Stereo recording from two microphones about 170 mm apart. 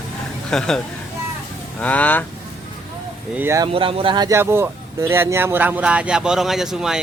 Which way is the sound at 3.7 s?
35° right (ahead or behind).